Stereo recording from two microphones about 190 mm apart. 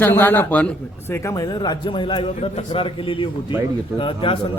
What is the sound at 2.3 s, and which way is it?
A man's voice, 35° left (ahead or behind).